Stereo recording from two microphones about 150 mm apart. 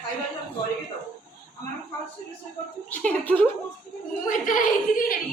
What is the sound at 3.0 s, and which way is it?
Speech, 10° left (ahead or behind).